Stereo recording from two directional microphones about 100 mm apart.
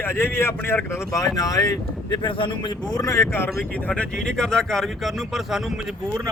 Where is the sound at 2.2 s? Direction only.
55° left (ahead or behind).